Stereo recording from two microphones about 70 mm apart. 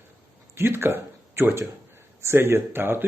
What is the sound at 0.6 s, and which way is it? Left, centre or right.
Speech, right.